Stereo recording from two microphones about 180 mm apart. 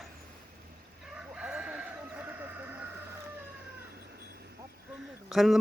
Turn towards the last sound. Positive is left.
turn(degrees=0)  # may be behind; listen again after turning